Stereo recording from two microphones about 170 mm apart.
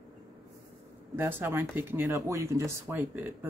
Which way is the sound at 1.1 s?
15° right (ahead or behind).